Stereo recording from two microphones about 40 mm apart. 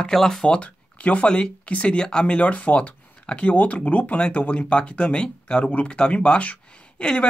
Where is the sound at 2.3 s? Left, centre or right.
Left.